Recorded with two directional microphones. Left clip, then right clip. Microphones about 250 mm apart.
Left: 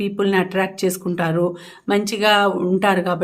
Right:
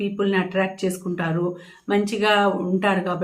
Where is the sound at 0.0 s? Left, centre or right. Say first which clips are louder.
Left 4 dB; left.